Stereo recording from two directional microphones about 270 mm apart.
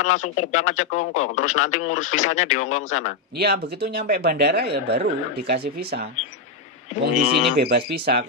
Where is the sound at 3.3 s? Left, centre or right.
Right.